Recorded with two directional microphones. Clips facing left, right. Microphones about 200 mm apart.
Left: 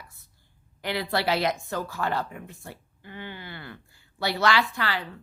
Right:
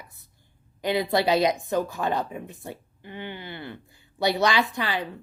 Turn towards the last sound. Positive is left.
turn(degrees=-20)  # may be behind; listen again after turning